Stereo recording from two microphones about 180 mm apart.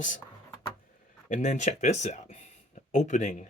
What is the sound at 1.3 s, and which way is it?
Speech, 40° left (ahead or behind).